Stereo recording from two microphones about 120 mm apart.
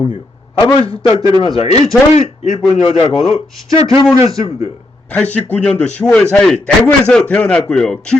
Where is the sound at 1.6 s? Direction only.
60° left (ahead or behind).